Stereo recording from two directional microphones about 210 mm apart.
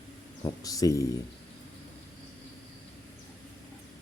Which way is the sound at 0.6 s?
15° left (ahead or behind).